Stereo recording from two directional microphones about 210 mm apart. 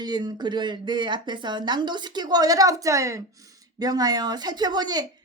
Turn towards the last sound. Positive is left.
turn(degrees=-20)  # may be behind; listen again after turning